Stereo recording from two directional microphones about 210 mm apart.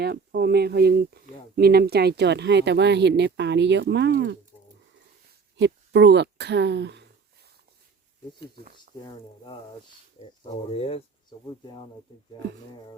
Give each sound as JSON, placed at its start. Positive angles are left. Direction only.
{"t": 0.0, "sound": "speech", "side_deg": -50}
{"t": 5.5, "sound": "speech", "side_deg": -55}
{"t": 10.4, "sound": "speech", "side_deg": 30}